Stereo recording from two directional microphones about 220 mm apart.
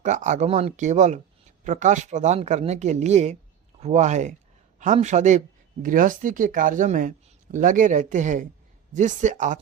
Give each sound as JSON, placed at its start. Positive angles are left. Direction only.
{"t": 0.0, "sound": "speech", "side_deg": -35}